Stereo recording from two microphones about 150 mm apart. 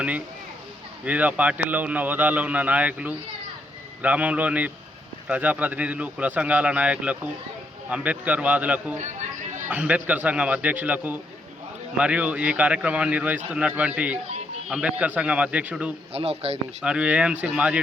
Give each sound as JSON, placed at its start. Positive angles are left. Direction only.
{"t": 1.0, "sound": "a man's voice", "side_deg": -10}
{"t": 9.0, "sound": "chatter", "side_deg": -55}
{"t": 9.6, "sound": "a man's voice", "side_deg": -10}
{"t": 16.1, "sound": "speech", "side_deg": -40}
{"t": 16.8, "sound": "a man's voice", "side_deg": -5}